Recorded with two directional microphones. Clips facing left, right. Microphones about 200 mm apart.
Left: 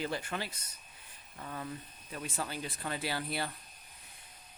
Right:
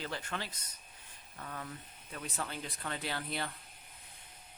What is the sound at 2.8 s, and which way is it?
Speech, 10° left (ahead or behind).